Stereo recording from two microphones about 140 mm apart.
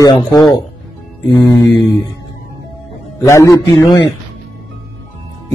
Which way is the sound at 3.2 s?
20° left (ahead or behind).